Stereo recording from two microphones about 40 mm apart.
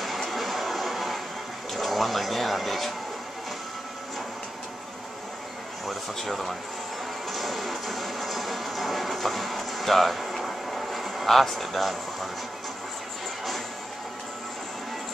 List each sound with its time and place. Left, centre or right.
0.0 s a sound: centre
1.7 s speech: centre
5.9 s speech: centre
7.2 s music: centre